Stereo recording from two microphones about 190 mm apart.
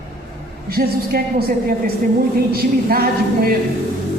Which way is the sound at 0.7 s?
50° right (ahead or behind).